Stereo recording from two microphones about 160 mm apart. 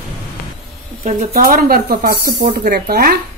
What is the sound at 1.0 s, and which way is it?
Speech, 55° right (ahead or behind).